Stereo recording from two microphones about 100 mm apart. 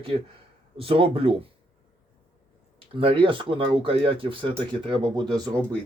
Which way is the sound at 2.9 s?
60° right (ahead or behind).